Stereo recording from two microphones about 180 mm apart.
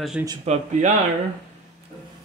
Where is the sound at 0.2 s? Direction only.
10° right (ahead or behind).